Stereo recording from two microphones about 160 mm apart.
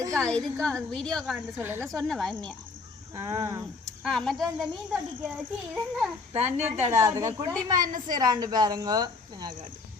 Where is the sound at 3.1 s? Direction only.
20° right (ahead or behind).